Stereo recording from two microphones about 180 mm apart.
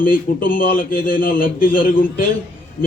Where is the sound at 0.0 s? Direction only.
50° left (ahead or behind).